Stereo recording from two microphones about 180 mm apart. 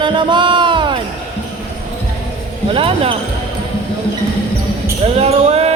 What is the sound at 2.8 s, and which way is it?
Speech, 30° right (ahead or behind).